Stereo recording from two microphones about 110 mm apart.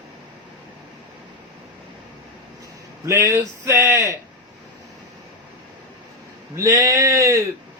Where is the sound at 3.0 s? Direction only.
30° right (ahead or behind).